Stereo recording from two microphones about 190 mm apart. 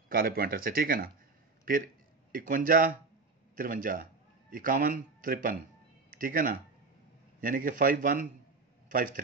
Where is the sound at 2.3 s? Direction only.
45° right (ahead or behind).